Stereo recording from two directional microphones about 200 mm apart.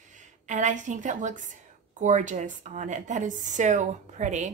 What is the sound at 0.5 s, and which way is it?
A woman's voice, 40° right (ahead or behind).